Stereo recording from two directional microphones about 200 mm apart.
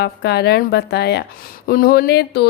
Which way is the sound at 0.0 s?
55° left (ahead or behind).